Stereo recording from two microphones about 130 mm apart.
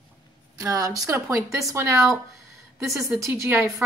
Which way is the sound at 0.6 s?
25° right (ahead or behind).